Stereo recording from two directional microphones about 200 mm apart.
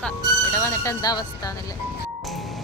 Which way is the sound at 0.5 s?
15° left (ahead or behind).